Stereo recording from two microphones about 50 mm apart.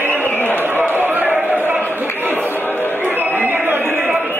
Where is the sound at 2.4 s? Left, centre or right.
Left.